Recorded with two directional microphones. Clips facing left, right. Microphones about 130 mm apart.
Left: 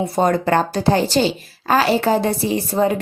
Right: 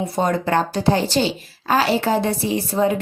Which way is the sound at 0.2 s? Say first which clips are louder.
Left 3 dB; 50° left (ahead or behind).